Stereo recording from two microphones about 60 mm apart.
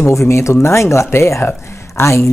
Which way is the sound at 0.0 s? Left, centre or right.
Left.